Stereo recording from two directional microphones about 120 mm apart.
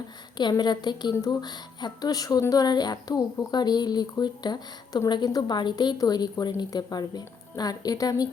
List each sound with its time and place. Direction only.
0.3 s speech: 35° left (ahead or behind)